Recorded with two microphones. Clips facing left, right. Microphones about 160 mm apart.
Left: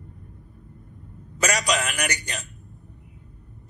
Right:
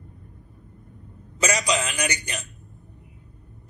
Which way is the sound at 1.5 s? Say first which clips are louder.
Even; 20° right (ahead or behind).